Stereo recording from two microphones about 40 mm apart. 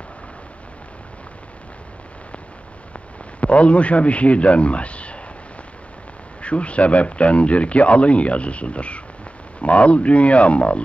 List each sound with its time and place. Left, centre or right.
3.3 s a man's voice: left
6.4 s speech: left